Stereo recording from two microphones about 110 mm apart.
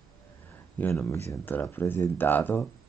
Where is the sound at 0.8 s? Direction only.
20° left (ahead or behind).